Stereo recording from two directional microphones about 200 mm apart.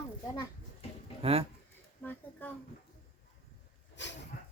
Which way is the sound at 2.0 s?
10° left (ahead or behind).